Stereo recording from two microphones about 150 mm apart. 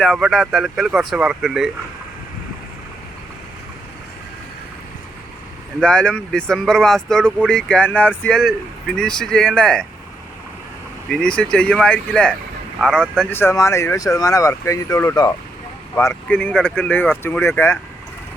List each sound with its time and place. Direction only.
0.0 s speech: centre (ahead or behind)
5.8 s speech: 5° left (ahead or behind)
11.1 s speech: 5° left (ahead or behind); by 15.4 s 25° left (ahead or behind)
16.0 s speech: 15° left (ahead or behind)